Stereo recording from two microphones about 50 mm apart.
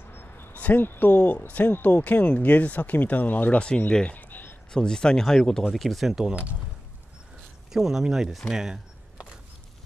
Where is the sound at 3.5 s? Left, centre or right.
Left.